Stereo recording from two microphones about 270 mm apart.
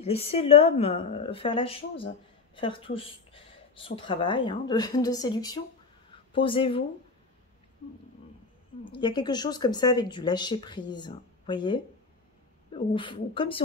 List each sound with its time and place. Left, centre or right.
0.0 s a woman's voice: left
8.9 s speech: centre